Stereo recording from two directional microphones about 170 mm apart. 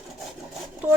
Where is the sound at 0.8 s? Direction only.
10° right (ahead or behind).